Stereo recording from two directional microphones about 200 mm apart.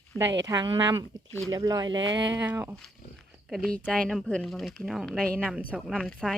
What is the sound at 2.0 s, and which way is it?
Speech, 65° right (ahead or behind).